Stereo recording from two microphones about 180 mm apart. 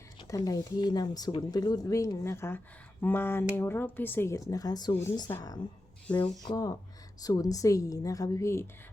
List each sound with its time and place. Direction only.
0.2 s speech: 20° left (ahead or behind)
6.1 s speech: 5° left (ahead or behind)
6.4 s speech: 20° left (ahead or behind)